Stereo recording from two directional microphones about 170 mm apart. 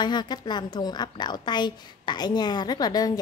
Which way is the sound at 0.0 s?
25° left (ahead or behind).